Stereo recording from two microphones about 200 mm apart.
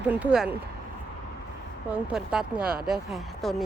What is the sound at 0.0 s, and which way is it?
Speech, 5° right (ahead or behind).